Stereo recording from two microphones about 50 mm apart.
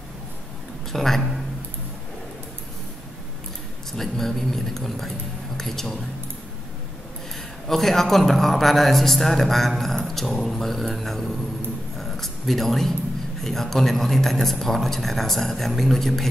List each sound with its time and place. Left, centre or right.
0.9 s speech: centre
3.9 s speech: centre
7.6 s a man's voice: centre